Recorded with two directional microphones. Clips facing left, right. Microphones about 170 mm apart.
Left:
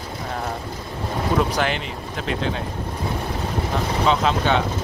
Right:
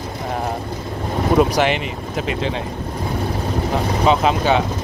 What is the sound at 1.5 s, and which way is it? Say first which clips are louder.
Speech: right 5 dB; 5° right (ahead or behind).